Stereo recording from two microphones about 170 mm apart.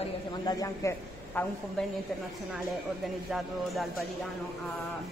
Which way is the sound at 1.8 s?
5° left (ahead or behind).